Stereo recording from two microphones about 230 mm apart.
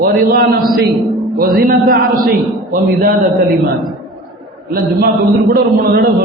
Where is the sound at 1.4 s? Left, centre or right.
Right.